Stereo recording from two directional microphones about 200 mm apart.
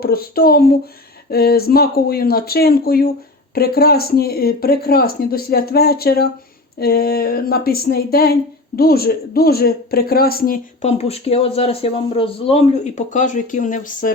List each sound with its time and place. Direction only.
0.0 s speech: 50° left (ahead or behind)
10.8 s speech: 30° left (ahead or behind)